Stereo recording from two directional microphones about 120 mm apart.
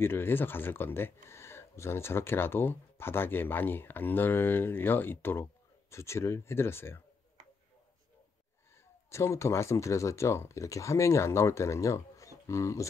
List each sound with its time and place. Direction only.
0.0 s speech: 20° left (ahead or behind)
9.1 s speech: 25° left (ahead or behind)